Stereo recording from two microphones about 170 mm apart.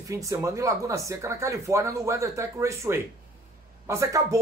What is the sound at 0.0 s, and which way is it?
Speech, 20° right (ahead or behind).